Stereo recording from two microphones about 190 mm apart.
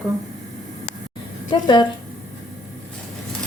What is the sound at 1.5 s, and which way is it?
Speech, 25° left (ahead or behind).